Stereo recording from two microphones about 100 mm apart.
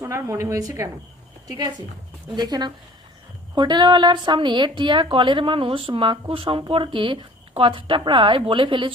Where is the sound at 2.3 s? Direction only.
45° right (ahead or behind).